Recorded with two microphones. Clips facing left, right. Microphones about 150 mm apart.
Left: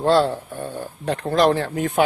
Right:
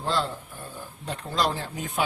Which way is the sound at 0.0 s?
70° left (ahead or behind).